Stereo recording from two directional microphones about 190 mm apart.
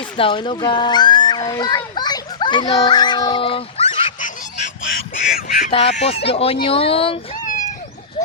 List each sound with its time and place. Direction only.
0.0 s a child's voice: 25° left (ahead or behind)
5.1 s duck: 45° left (ahead or behind)
5.9 s speech: 35° left (ahead or behind)
7.4 s a sound: 40° left (ahead or behind)